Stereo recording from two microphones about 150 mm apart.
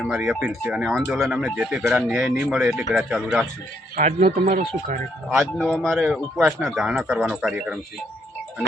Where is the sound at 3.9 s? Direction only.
55° right (ahead or behind).